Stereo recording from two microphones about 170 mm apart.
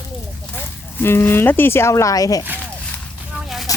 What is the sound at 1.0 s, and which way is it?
Speech, 15° left (ahead or behind).